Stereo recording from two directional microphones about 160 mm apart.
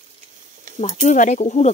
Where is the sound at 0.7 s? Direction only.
50° left (ahead or behind).